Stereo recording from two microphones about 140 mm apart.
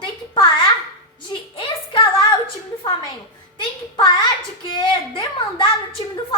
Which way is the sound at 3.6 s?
35° left (ahead or behind).